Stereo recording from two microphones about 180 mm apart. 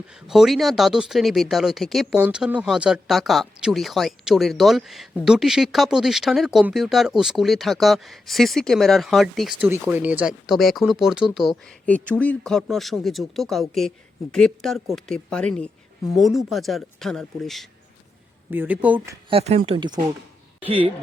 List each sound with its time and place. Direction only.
0.3 s speech: centre (ahead or behind)
18.5 s speech: 10° right (ahead or behind)
19.3 s speech: 35° right (ahead or behind)